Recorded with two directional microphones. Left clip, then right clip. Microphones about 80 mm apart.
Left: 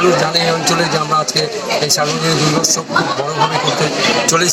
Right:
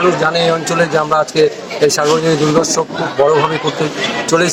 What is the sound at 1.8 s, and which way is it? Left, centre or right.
Speech, right.